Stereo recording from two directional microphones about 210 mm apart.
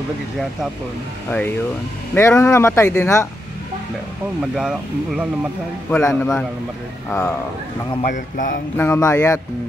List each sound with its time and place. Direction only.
2.1 s speech: 10° left (ahead or behind)
4.6 s speech: 5° right (ahead or behind)
5.9 s speech: 10° left (ahead or behind)
8.0 s speech: 40° left (ahead or behind)
8.7 s speech: 15° left (ahead or behind)